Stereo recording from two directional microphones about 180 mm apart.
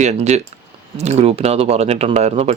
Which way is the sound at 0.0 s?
40° right (ahead or behind).